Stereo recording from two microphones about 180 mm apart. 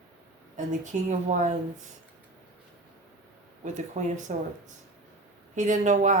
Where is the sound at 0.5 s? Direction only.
45° right (ahead or behind).